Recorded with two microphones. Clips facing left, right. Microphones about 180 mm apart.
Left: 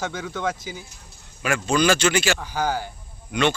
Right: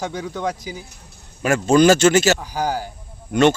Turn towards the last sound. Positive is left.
turn(degrees=-45)  # may be behind; listen again after turning